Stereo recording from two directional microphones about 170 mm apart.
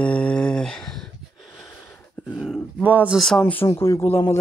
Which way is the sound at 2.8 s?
10° right (ahead or behind).